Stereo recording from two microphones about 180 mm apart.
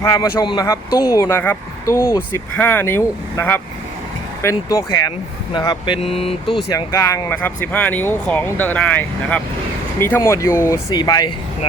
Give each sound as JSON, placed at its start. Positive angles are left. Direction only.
{"t": 0.0, "sound": "speech", "side_deg": 20}
{"t": 6.7, "sound": "speech", "side_deg": 20}